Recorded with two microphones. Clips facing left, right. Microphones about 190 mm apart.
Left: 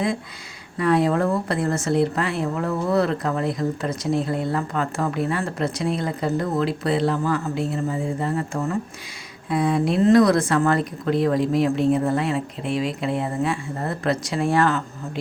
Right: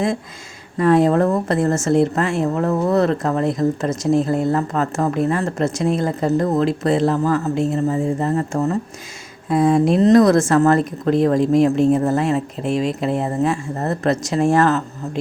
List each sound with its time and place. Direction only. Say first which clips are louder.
0.8 s speech: right 5 dB; 40° right (ahead or behind)